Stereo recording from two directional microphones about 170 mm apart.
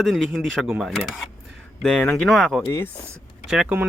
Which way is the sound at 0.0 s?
Centre (ahead or behind).